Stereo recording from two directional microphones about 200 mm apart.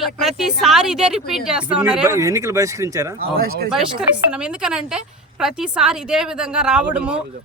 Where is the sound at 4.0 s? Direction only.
5° right (ahead or behind).